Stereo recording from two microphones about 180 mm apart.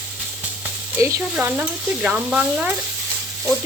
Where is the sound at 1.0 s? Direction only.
15° right (ahead or behind).